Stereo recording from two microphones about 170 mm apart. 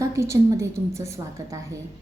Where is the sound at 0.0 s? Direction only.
15° right (ahead or behind).